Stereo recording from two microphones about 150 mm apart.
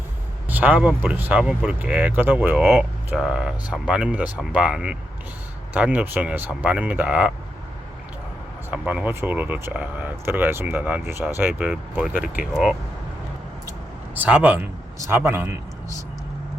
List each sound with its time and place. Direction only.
0.4 s speech: 10° right (ahead or behind)
8.7 s speech: 10° right (ahead or behind)
14.2 s a man's voice: 10° right (ahead or behind)